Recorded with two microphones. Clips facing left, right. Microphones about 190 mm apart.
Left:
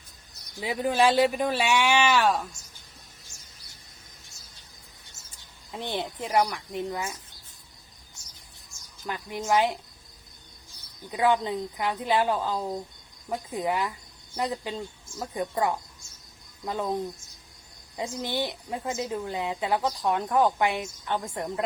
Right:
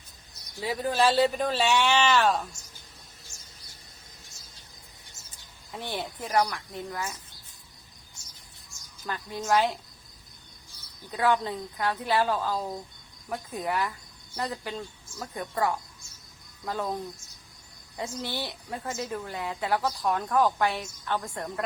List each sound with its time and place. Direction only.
0.5 s a woman's voice: 20° left (ahead or behind)
5.7 s speech: 20° left (ahead or behind)
9.0 s a woman's voice: 15° left (ahead or behind)
11.0 s a woman's voice: 15° left (ahead or behind)